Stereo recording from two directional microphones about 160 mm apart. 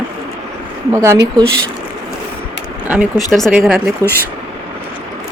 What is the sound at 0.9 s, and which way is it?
Speech, 15° right (ahead or behind).